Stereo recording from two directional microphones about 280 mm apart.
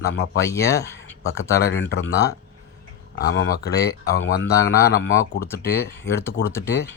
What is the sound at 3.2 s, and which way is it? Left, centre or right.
Speech, left.